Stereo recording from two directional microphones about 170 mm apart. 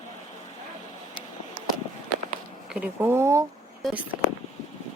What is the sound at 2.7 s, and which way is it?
Speech, 10° right (ahead or behind).